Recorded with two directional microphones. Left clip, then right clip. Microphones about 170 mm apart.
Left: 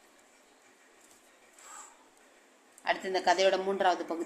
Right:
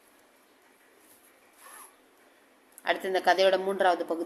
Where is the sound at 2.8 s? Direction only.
20° right (ahead or behind).